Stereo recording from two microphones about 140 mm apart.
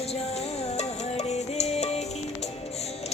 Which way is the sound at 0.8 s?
50° left (ahead or behind).